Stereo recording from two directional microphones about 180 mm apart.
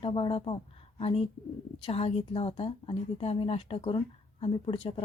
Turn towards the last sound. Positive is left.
turn(degrees=30)  # may be behind; listen again after turning